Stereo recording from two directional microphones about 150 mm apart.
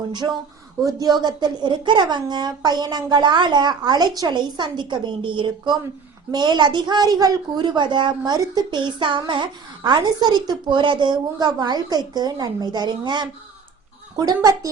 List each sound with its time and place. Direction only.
0.9 s a woman's voice: 25° right (ahead or behind)